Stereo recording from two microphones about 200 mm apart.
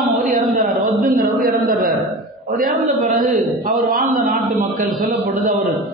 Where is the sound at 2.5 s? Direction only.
45° right (ahead or behind).